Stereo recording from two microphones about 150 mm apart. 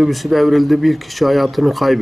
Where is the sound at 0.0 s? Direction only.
Centre (ahead or behind).